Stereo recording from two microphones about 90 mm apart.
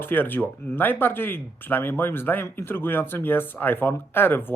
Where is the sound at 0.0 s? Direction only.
20° left (ahead or behind).